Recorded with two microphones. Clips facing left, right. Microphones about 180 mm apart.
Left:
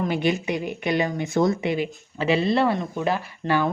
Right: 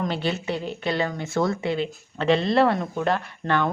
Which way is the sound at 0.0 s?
15° left (ahead or behind).